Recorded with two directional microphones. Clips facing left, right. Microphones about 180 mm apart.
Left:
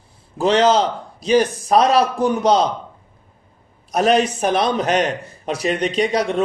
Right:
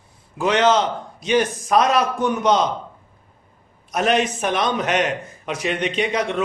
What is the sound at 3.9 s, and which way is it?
A man's voice, 35° left (ahead or behind).